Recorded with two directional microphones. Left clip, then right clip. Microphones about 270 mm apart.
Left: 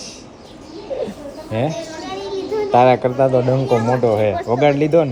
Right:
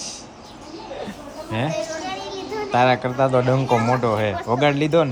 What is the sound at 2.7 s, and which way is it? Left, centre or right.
Speech, centre.